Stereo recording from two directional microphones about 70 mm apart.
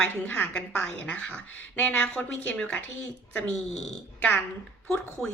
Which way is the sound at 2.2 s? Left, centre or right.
Centre.